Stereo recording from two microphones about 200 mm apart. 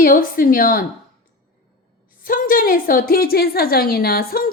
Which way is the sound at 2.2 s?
45° left (ahead or behind).